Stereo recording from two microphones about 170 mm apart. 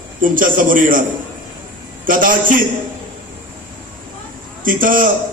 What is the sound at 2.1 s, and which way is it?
Speech, 55° right (ahead or behind).